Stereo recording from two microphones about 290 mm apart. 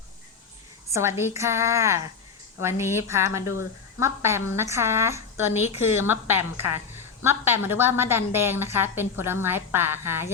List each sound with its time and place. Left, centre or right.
0.9 s a woman's voice: centre
3.4 s speech: left
4.0 s a woman's voice: centre